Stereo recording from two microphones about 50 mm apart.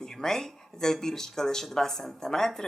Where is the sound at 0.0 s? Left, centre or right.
Centre.